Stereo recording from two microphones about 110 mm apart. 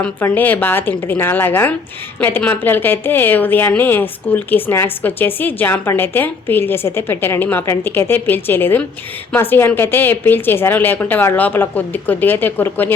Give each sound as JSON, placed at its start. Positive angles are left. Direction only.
{"t": 0.3, "sound": "a woman's voice", "side_deg": 15}